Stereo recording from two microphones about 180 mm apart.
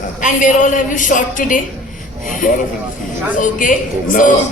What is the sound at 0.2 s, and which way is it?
A man's voice, 45° left (ahead or behind).